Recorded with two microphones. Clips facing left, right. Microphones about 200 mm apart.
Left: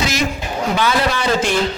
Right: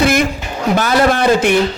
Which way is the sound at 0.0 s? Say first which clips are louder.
Right 7 dB; 55° right (ahead or behind).